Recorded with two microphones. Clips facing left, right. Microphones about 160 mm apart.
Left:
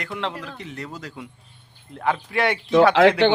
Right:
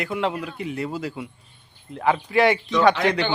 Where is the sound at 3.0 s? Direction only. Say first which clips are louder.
Left 7 dB; 90° left.